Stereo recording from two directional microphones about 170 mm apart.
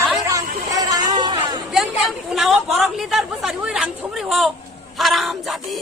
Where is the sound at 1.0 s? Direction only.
25° right (ahead or behind).